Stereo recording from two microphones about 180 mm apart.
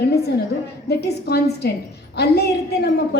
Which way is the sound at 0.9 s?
65° left (ahead or behind).